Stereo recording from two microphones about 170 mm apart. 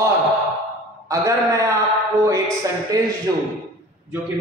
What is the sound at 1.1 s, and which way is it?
Speech, 20° right (ahead or behind).